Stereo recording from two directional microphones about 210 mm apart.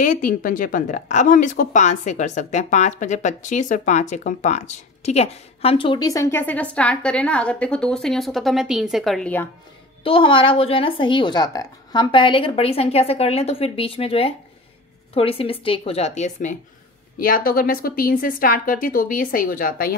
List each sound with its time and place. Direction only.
0.0 s a woman's voice: 40° left (ahead or behind); by 9.5 s 5° left (ahead or behind)
10.0 s a woman's voice: 25° left (ahead or behind); by 20.0 s 45° left (ahead or behind)